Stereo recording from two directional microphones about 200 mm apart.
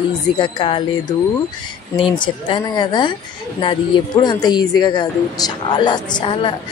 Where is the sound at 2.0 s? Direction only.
25° left (ahead or behind).